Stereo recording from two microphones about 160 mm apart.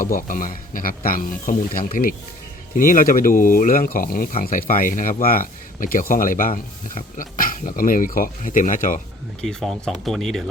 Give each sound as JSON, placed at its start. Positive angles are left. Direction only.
{"t": 0.0, "sound": "speech", "side_deg": 60}
{"t": 9.4, "sound": "speech", "side_deg": 5}